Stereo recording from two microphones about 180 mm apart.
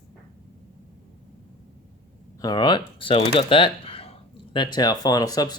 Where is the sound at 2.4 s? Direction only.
25° left (ahead or behind).